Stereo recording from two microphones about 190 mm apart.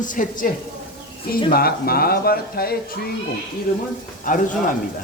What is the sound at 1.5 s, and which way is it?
Speech, 55° left (ahead or behind).